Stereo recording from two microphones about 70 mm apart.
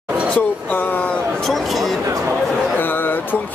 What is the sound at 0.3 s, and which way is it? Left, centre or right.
Speech, left.